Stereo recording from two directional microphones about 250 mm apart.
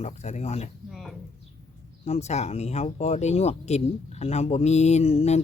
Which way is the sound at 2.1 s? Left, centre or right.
Left.